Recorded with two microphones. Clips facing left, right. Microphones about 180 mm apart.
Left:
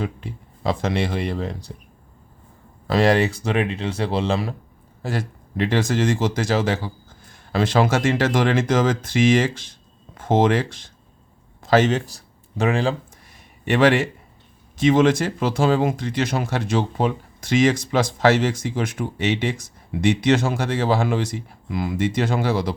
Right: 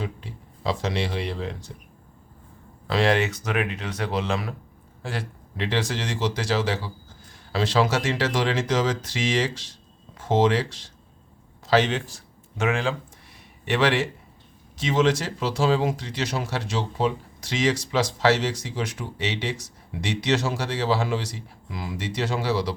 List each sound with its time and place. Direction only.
0.0 s speech: 55° left (ahead or behind)
2.8 s speech: 40° left (ahead or behind)
5.0 s speech: 45° left (ahead or behind)
13.7 s speech: 50° left (ahead or behind)